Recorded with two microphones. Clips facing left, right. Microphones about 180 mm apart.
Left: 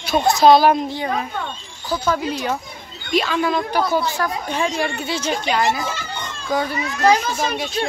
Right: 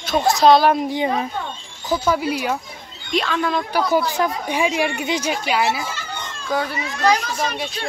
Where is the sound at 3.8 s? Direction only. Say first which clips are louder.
Right 2 dB; 15° right (ahead or behind).